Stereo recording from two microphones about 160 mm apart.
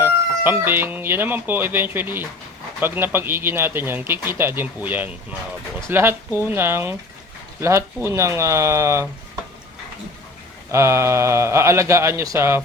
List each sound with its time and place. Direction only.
0.0 s speech: 15° right (ahead or behind)
10.7 s speech: 15° right (ahead or behind)